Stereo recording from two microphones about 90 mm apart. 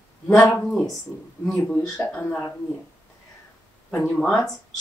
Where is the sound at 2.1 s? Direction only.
15° left (ahead or behind).